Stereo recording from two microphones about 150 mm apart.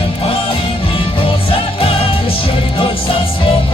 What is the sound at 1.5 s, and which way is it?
Music, 40° left (ahead or behind).